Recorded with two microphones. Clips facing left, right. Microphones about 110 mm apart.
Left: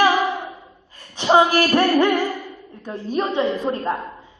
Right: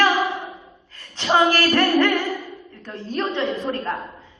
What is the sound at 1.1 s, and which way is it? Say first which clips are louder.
A woman's voice: left 3 dB; 15° left (ahead or behind).